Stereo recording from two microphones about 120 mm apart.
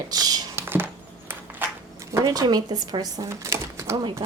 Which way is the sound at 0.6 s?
20° right (ahead or behind).